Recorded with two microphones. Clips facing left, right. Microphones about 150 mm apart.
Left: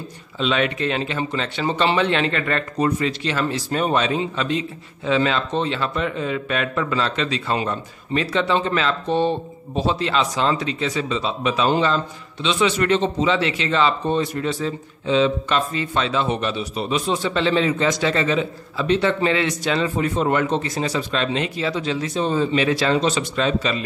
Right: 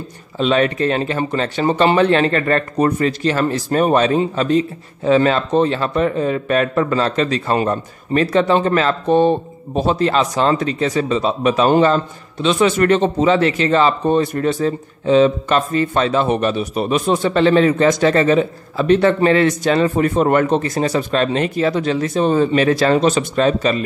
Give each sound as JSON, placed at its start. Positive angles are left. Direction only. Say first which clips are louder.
{"t": 0.4, "sound": "speech", "louder": "right 5 dB", "side_deg": -40}